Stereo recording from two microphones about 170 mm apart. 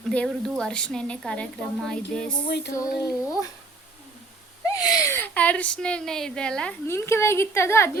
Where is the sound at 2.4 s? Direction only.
80° left.